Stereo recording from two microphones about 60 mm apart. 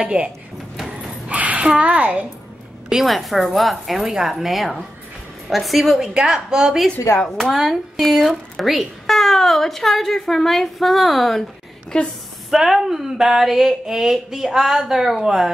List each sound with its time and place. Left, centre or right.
0.0 s speech: centre
0.8 s a sound: centre
2.9 s a woman's voice: centre
7.1 s speech: left
7.5 s speech: centre
11.9 s a woman's voice: centre
12.4 s speech: centre